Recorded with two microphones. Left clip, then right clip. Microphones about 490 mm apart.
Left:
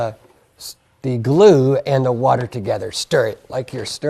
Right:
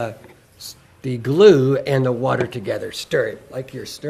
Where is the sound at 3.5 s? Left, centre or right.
Left.